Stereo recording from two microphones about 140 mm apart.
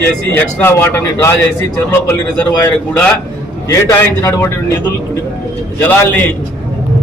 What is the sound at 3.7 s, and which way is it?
A man's voice, 20° left (ahead or behind).